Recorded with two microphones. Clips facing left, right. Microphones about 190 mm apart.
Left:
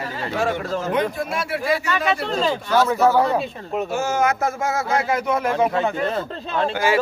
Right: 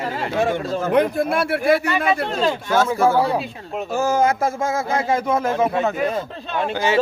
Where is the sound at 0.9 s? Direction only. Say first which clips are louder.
Right 9 dB; 55° right (ahead or behind).